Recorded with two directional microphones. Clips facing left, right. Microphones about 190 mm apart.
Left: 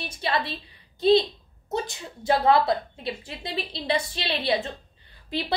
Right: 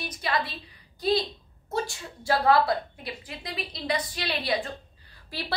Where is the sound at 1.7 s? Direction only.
20° left (ahead or behind).